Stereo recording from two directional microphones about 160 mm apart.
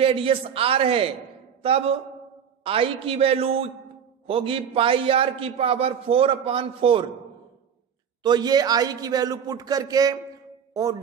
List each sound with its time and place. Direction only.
0.0 s a man's voice: 35° right (ahead or behind)
8.2 s a man's voice: 25° right (ahead or behind)
10.7 s music: 20° right (ahead or behind)